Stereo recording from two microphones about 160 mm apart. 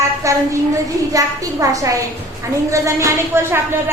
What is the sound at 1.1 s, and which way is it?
A woman's voice, 20° right (ahead or behind).